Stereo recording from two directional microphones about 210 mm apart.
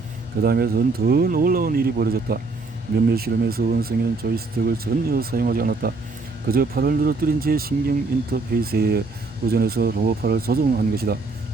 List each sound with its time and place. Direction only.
0.4 s speech: 45° right (ahead or behind)